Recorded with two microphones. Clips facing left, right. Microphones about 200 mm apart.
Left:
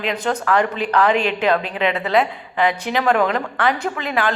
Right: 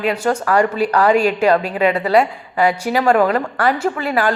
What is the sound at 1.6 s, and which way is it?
Speech, 40° right (ahead or behind).